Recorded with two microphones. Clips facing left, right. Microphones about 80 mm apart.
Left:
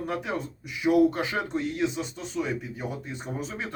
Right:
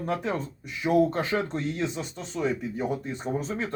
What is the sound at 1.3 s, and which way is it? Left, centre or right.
Speech, centre.